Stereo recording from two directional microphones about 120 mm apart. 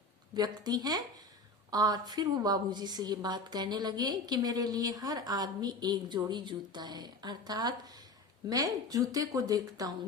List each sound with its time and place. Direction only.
0.3 s a woman's voice: 35° right (ahead or behind)